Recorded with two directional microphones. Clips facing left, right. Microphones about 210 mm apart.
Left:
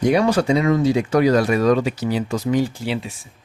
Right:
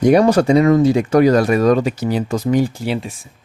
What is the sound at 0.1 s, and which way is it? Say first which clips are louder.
Speech: right 6 dB; 45° right (ahead or behind).